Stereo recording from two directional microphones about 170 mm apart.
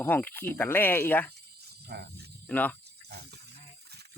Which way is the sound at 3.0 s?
75° right (ahead or behind).